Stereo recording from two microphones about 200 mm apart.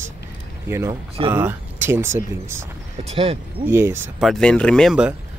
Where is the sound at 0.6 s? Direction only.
10° right (ahead or behind).